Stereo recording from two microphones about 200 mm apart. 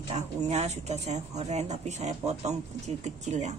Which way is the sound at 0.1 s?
35° right (ahead or behind).